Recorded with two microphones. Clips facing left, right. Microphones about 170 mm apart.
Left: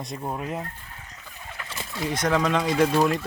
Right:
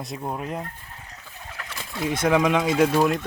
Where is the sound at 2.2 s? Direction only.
10° right (ahead or behind).